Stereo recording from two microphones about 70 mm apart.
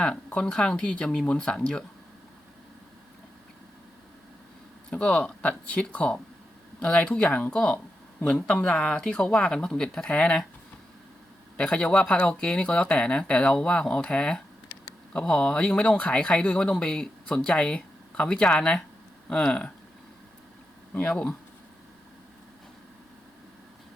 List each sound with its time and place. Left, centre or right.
0.3 s speech: centre
4.9 s speech: centre
11.5 s speech: centre
20.9 s speech: left